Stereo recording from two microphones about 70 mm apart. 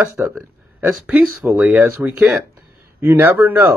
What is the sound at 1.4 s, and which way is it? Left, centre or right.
Speech, right.